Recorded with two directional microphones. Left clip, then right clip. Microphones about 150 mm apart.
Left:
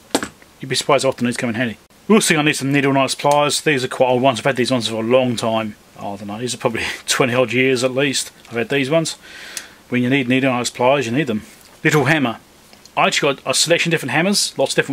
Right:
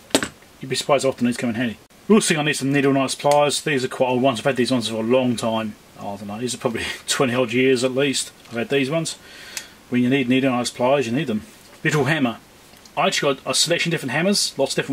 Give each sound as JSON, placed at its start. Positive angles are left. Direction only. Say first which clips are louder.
{"t": 0.7, "sound": "speech", "louder": "left 3 dB", "side_deg": 25}